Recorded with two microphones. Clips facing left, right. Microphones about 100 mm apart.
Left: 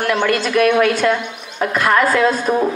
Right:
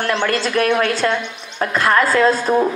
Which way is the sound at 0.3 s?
35° right (ahead or behind).